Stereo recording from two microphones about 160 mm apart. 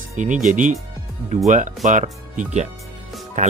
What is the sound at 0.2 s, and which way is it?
Speech, 50° right (ahead or behind).